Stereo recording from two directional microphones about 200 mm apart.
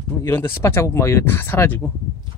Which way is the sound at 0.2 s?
10° left (ahead or behind).